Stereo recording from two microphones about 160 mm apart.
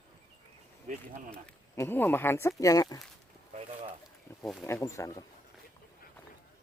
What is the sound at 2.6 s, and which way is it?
Wild animals, 20° left (ahead or behind).